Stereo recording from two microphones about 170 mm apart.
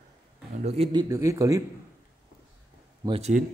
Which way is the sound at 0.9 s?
20° right (ahead or behind).